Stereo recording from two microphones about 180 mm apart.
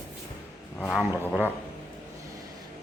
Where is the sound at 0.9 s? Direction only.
5° right (ahead or behind).